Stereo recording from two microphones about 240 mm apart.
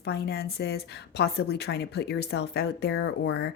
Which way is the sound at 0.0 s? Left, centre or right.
Left.